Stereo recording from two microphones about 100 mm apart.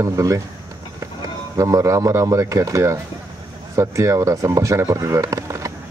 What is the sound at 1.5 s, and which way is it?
Speech, 30° right (ahead or behind).